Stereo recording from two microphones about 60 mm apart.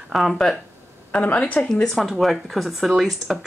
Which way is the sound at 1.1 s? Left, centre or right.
Left.